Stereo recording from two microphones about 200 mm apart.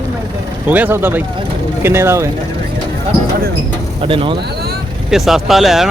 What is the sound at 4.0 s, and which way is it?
Speech, 25° right (ahead or behind).